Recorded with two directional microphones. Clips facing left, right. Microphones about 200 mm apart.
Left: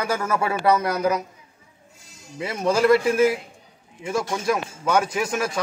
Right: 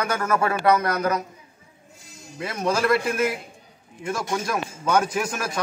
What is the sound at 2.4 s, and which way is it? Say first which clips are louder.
A man's voice: left 3 dB; 5° left (ahead or behind).